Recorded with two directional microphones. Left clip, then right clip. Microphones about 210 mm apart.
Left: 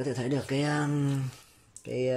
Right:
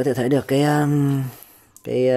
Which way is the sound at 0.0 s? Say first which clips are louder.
Right 12 dB; 35° right (ahead or behind).